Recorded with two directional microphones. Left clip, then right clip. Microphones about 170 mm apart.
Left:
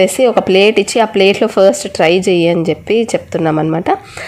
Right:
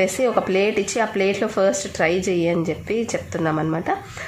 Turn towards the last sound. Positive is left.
turn(degrees=40)  # may be behind; listen again after turning